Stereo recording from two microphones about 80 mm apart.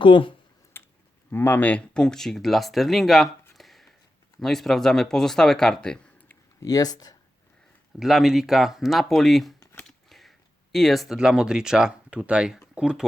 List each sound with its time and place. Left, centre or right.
0.0 s speech: left
0.7 s finger snapping: left
1.3 s speech: left; by 6.0 s centre
6.6 s speech: left
7.9 s speech: centre